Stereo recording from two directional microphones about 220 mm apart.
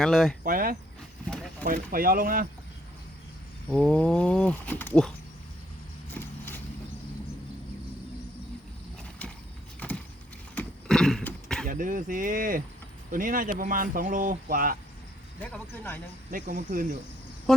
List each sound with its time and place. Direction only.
0.0 s speech: centre (ahead or behind)
0.4 s speech: 40° right (ahead or behind)
1.3 s clip-clop: 5° left (ahead or behind)
1.6 s speech: 40° right (ahead or behind)
3.7 s speech: 5° left (ahead or behind)
6.1 s vehicle: 10° left (ahead or behind)
10.5 s vehicle: 5° left (ahead or behind)
11.6 s speech: 40° right (ahead or behind)
15.4 s speech: 5° left (ahead or behind)
16.3 s speech: 35° right (ahead or behind)